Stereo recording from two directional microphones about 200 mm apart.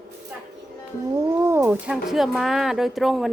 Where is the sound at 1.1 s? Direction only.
15° right (ahead or behind).